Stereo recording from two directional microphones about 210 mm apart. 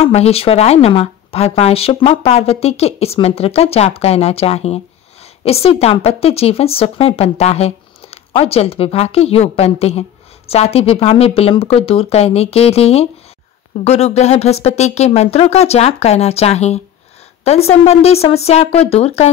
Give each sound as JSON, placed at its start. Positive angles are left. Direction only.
{"t": 0.0, "sound": "speech", "side_deg": 30}